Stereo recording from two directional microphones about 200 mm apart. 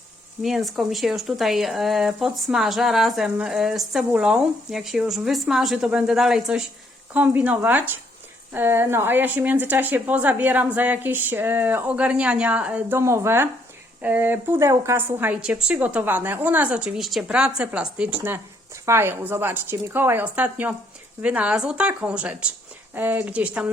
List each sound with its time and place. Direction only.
0.4 s a woman's voice: centre (ahead or behind)